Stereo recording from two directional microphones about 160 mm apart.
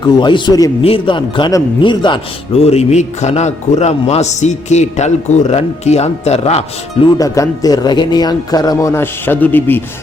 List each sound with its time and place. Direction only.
0.0 s a man's voice: 30° left (ahead or behind)
7.2 s speech: 20° left (ahead or behind)